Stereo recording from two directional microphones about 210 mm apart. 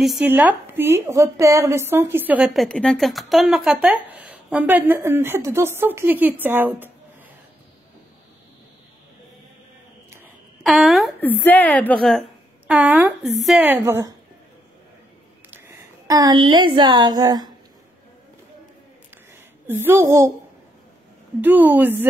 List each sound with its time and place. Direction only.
0.0 s a woman's voice: 5° right (ahead or behind)
10.2 s a woman's voice: centre (ahead or behind)
15.5 s a woman's voice: 10° right (ahead or behind)
19.7 s a woman's voice: 10° right (ahead or behind)
21.4 s a woman's voice: 10° right (ahead or behind)